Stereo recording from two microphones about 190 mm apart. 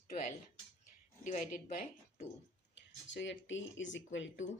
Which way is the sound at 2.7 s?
70° left (ahead or behind).